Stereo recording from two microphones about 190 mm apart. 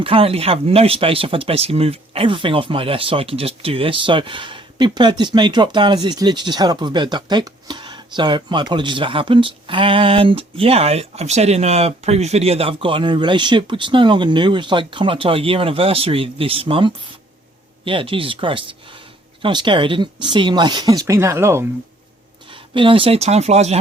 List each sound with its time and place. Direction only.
0.0 s speech: 30° right (ahead or behind); by 21.7 s 15° right (ahead or behind)
22.4 s speech: 25° right (ahead or behind)